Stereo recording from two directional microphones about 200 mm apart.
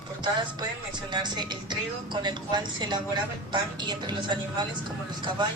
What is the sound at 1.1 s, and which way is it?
Music, 20° right (ahead or behind).